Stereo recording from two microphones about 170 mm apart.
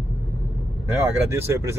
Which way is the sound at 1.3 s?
15° right (ahead or behind).